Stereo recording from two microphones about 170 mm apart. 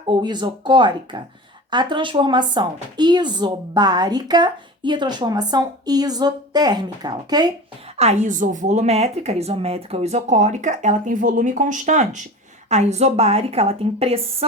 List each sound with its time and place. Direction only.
0.1 s speech: 25° right (ahead or behind)
7.9 s a woman's voice: 40° right (ahead or behind)